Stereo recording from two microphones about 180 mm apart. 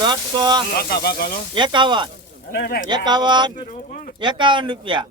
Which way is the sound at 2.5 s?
60° left (ahead or behind).